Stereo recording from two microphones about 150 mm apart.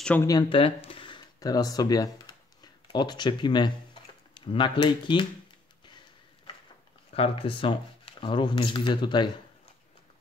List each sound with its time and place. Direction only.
0.0 s speech: 10° left (ahead or behind)
0.3 s speech: 30° left (ahead or behind)
0.8 s a sound: 35° left (ahead or behind)
2.6 s speech: 30° left (ahead or behind)
7.2 s speech: 35° left (ahead or behind)